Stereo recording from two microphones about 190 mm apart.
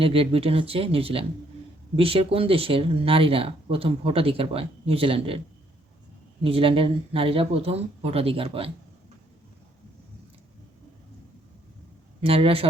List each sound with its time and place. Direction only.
0.0 s speech: 30° right (ahead or behind)
6.4 s speech: 30° right (ahead or behind)
12.2 s speech: 30° right (ahead or behind)